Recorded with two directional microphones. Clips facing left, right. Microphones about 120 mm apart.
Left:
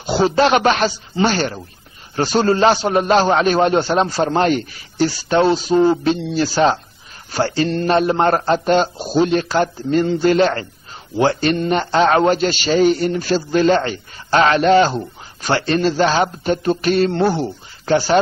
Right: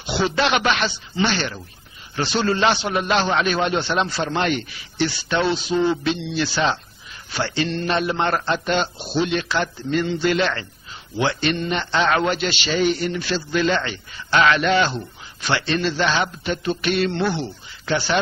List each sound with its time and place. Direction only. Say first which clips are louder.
0.0 s a man's voice: left 6 dB; 40° left (ahead or behind)